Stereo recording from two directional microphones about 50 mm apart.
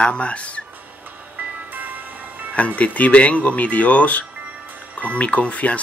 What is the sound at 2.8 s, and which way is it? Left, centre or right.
Speech, left.